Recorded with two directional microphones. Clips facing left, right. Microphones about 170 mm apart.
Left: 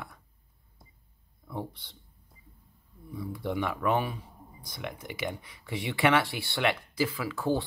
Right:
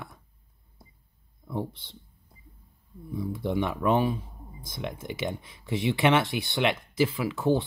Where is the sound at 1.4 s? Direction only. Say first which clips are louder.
Right 4 dB; 25° right (ahead or behind).